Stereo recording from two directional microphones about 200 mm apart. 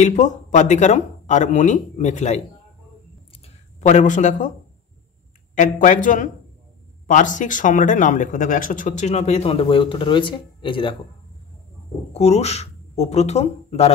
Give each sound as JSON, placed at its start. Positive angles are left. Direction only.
{"t": 0.0, "sound": "speech", "side_deg": 35}
{"t": 3.4, "sound": "speech", "side_deg": 35}
{"t": 5.5, "sound": "speech", "side_deg": 40}
{"t": 12.1, "sound": "speech", "side_deg": 30}